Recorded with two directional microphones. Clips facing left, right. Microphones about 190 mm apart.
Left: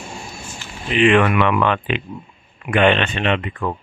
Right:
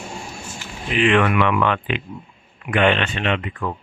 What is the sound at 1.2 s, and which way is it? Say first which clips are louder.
Speech: left 2 dB; 25° left (ahead or behind).